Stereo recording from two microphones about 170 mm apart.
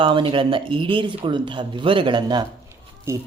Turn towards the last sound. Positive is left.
turn(degrees=-15)  # may be behind; listen again after turning